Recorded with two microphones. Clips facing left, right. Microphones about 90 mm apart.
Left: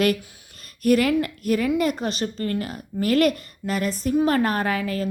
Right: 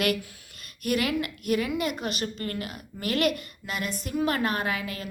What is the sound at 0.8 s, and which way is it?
A woman's voice, 40° left (ahead or behind).